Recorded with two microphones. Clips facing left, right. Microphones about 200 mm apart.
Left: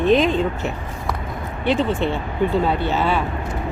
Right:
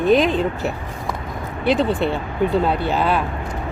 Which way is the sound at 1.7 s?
35° right (ahead or behind).